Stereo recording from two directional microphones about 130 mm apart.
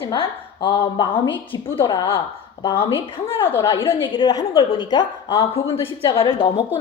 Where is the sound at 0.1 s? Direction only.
40° left (ahead or behind).